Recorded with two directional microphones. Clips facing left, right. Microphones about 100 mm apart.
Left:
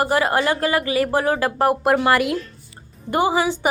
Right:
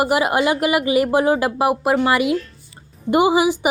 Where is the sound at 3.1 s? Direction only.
15° right (ahead or behind).